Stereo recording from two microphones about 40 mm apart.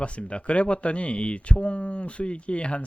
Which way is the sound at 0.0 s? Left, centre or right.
Left.